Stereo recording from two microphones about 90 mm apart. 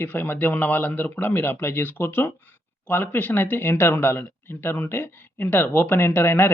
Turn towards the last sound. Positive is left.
turn(degrees=25)  # may be behind; listen again after turning